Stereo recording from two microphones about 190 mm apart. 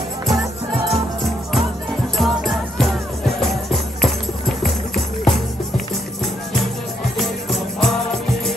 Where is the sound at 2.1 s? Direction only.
Centre (ahead or behind).